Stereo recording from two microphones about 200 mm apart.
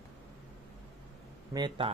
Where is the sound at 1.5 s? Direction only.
25° right (ahead or behind).